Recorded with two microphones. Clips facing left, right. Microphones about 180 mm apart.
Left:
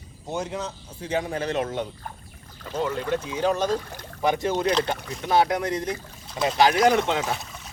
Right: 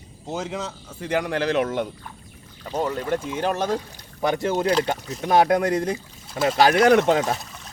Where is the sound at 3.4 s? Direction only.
55° right (ahead or behind).